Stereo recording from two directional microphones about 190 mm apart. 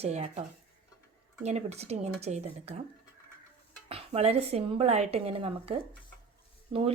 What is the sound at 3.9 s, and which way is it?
A woman's voice, 30° right (ahead or behind).